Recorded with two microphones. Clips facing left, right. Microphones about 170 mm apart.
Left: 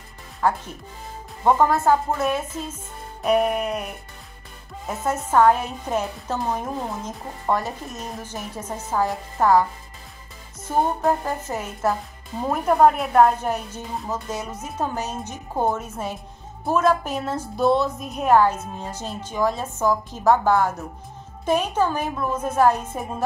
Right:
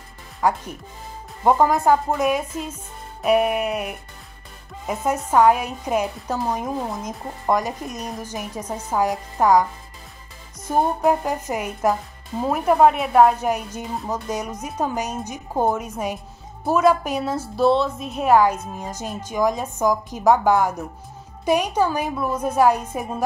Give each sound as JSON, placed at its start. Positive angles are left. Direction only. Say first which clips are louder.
{"t": 0.4, "sound": "speech", "louder": "right 1 dB", "side_deg": -10}
{"t": 10.7, "sound": "speech", "louder": "right 2 dB", "side_deg": -15}
{"t": 12.4, "sound": "a woman's voice", "louder": "right 1 dB", "side_deg": -5}